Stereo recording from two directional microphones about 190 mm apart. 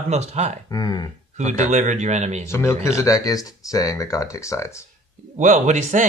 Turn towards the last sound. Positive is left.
turn(degrees=-40)  # may be behind; listen again after turning